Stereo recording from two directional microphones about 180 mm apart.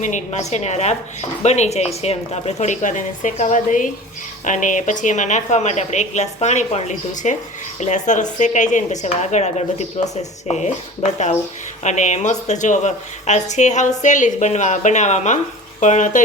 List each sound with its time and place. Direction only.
0.0 s speech: 40° left (ahead or behind)